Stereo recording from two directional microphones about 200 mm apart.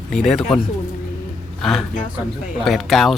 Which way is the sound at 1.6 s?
Centre (ahead or behind).